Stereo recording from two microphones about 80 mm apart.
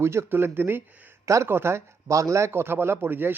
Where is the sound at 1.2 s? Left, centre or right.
Right.